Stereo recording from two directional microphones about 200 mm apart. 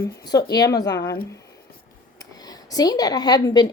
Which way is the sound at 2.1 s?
20° left (ahead or behind).